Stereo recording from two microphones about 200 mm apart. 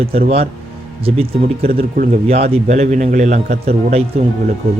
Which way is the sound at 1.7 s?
45° right (ahead or behind).